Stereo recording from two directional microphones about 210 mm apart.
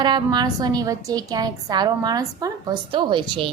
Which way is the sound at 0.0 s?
20° right (ahead or behind).